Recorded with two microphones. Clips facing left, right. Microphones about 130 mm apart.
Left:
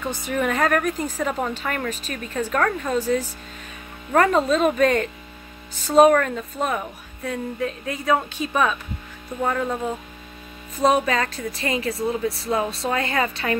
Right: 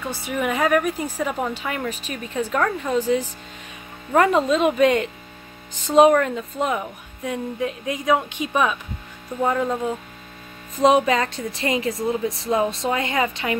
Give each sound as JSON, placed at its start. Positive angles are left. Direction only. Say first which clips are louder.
{"t": 0.2, "sound": "speech", "louder": "even", "side_deg": -10}
{"t": 4.1, "sound": "speech", "louder": "right 1 dB", "side_deg": -10}
{"t": 10.8, "sound": "a woman's voice", "louder": "right 3 dB", "side_deg": -25}